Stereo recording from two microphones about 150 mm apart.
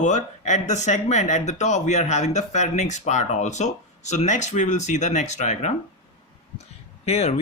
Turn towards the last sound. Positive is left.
turn(degrees=45)  # may be behind; listen again after turning